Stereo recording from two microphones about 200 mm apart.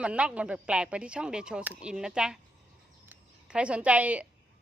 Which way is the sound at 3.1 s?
5° right (ahead or behind).